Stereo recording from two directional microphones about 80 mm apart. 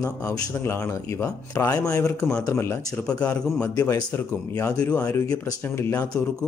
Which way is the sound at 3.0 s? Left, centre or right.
Centre.